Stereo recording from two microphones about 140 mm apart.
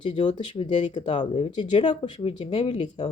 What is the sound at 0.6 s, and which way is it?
Speech, 35° left (ahead or behind).